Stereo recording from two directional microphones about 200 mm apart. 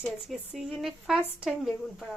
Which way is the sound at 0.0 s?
Centre (ahead or behind).